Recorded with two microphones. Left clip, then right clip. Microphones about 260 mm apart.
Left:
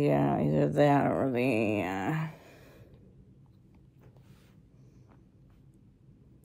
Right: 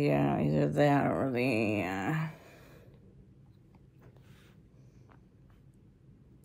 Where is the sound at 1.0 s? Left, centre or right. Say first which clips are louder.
Left 2 dB; centre.